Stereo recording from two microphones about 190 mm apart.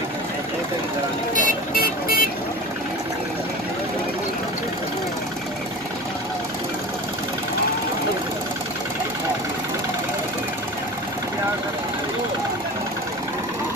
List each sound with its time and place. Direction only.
1.3 s vehicle: 45° left (ahead or behind)